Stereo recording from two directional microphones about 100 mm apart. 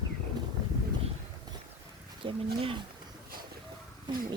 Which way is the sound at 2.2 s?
60° right (ahead or behind).